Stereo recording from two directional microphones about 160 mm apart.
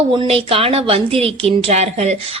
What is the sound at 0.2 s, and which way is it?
A woman's voice, 35° right (ahead or behind).